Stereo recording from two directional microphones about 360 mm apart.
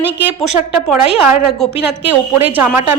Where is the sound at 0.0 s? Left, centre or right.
Centre.